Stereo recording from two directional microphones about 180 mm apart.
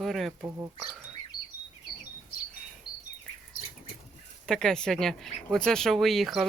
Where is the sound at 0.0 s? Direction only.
Centre (ahead or behind).